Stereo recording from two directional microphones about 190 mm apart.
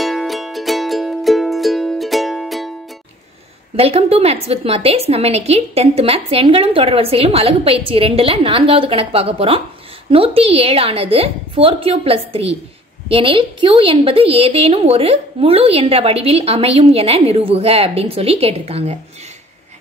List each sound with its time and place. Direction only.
0.0 s music: centre (ahead or behind)
3.7 s a woman's voice: 30° right (ahead or behind)